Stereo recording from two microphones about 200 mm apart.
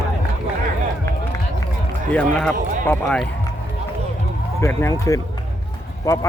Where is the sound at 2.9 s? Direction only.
5° left (ahead or behind).